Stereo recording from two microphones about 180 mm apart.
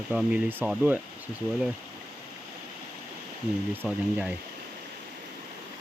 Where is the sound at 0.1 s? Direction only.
5° right (ahead or behind).